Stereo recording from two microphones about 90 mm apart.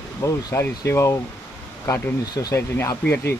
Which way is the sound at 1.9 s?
40° left (ahead or behind).